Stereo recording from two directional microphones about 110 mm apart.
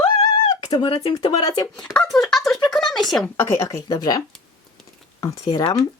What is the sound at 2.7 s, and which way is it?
Speech, 5° left (ahead or behind).